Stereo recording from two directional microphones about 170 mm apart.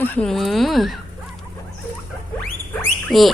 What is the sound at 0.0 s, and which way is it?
Speech, 10° left (ahead or behind).